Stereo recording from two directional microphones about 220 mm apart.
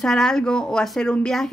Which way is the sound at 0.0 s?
5° left (ahead or behind).